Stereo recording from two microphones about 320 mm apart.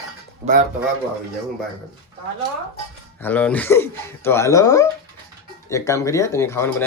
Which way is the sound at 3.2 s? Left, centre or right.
Centre.